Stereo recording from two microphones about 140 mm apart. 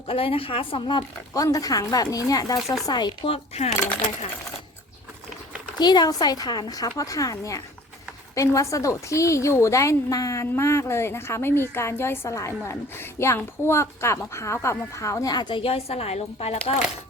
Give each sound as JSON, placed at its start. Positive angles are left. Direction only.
{"t": 0.1, "sound": "a woman's voice", "side_deg": 45}
{"t": 1.3, "sound": "a woman's voice", "side_deg": 25}
{"t": 3.2, "sound": "a child's voice", "side_deg": 45}
{"t": 5.8, "sound": "a woman's voice", "side_deg": 30}